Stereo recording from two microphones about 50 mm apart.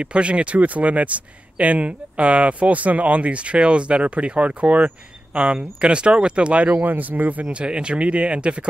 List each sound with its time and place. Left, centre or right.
0.0 s speech: right
6.7 s speech: right
7.5 s speech: centre